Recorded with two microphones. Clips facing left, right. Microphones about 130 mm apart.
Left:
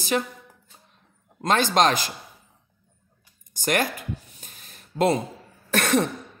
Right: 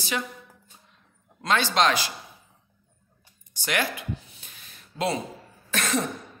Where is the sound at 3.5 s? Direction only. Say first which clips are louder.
Left 4 dB; 45° left (ahead or behind).